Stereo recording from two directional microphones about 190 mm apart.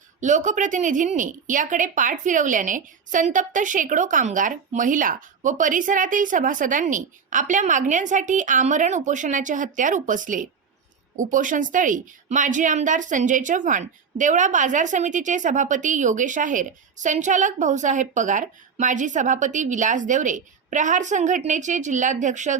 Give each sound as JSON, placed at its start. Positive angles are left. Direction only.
{"t": 0.2, "sound": "a woman's voice", "side_deg": -40}